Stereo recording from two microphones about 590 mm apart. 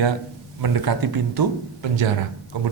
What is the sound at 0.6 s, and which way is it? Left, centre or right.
Speech, right.